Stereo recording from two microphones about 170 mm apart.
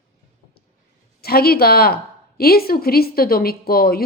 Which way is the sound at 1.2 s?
65° left (ahead or behind).